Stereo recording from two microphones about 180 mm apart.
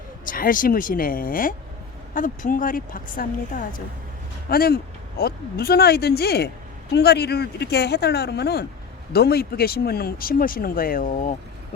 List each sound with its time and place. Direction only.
0.3 s speech: 50° left (ahead or behind)